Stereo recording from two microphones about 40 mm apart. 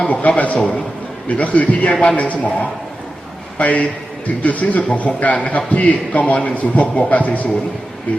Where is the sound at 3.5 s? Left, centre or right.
Left.